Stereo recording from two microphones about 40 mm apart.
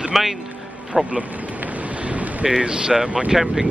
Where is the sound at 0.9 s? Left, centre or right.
Centre.